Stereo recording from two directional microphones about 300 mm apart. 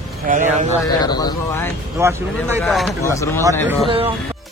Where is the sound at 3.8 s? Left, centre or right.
Centre.